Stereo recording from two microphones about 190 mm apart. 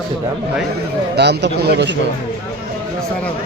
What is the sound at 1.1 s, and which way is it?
Speech, 65° right (ahead or behind).